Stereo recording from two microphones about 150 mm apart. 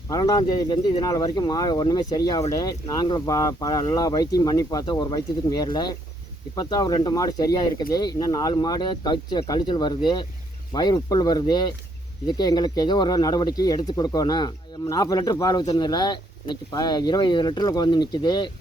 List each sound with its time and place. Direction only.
0.1 s speech: 25° left (ahead or behind)